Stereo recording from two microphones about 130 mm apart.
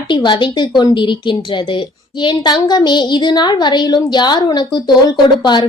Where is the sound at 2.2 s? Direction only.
35° left (ahead or behind).